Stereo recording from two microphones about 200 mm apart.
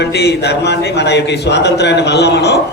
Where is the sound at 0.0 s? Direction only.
55° left (ahead or behind).